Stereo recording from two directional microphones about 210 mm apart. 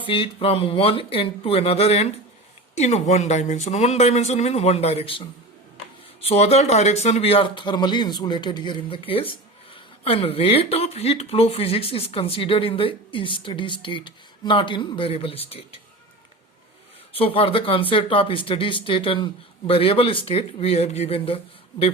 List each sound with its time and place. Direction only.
0.0 s speech: 25° left (ahead or behind)
6.2 s speech: 30° left (ahead or behind)
17.2 s speech: 25° left (ahead or behind)